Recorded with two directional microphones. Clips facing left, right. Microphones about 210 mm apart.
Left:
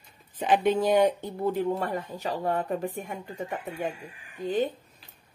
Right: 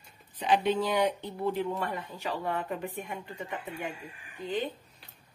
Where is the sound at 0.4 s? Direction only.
45° left (ahead or behind).